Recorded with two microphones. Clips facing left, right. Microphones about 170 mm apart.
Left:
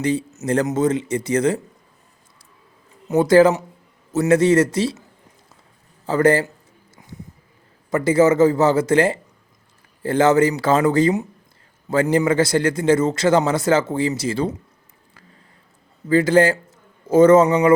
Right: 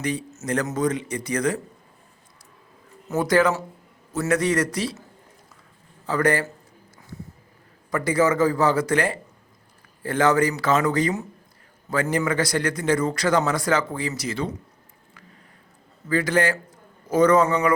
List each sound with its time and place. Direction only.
0.0 s a man's voice: 25° left (ahead or behind)
3.1 s a man's voice: 25° left (ahead or behind)
6.1 s a man's voice: 25° left (ahead or behind)
7.9 s a man's voice: 25° left (ahead or behind)
16.0 s a man's voice: 25° left (ahead or behind)